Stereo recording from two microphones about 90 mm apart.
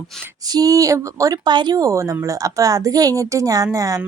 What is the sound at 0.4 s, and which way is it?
Speech, 45° right (ahead or behind).